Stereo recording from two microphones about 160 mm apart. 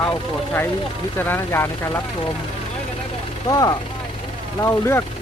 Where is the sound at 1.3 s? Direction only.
15° left (ahead or behind).